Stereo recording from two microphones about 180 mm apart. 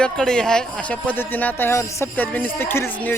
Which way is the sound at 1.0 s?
10° left (ahead or behind).